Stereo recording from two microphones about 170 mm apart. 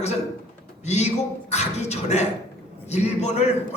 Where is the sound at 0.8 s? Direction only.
40° left (ahead or behind).